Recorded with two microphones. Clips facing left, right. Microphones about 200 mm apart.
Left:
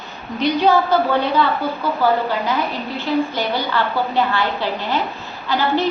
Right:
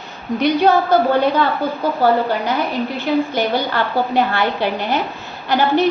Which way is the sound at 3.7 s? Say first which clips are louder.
Right 2 dB; 55° right (ahead or behind).